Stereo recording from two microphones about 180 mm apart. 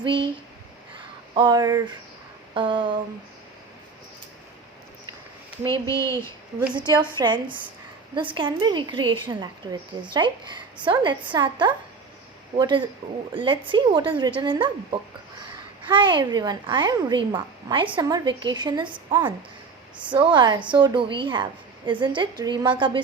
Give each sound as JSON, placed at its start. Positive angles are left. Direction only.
{"t": 0.0, "sound": "a woman's voice", "side_deg": -25}
{"t": 1.3, "sound": "a woman's voice", "side_deg": -25}
{"t": 5.7, "sound": "speech", "side_deg": 15}
{"t": 6.7, "sound": "a woman's voice", "side_deg": -25}
{"t": 20.1, "sound": "a woman's voice", "side_deg": -25}